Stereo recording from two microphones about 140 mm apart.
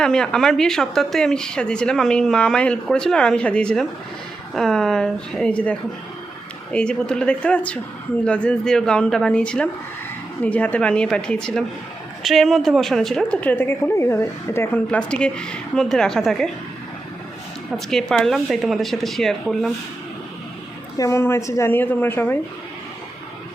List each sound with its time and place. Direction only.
0.0 s a woman's voice: 5° left (ahead or behind)
6.7 s a woman's voice: 5° left (ahead or behind)
17.7 s a woman's voice: centre (ahead or behind)
21.0 s a woman's voice: 20° left (ahead or behind)